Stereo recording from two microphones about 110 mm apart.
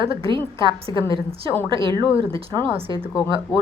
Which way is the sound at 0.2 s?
45° right (ahead or behind).